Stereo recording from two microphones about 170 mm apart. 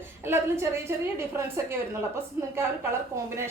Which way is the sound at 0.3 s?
15° right (ahead or behind).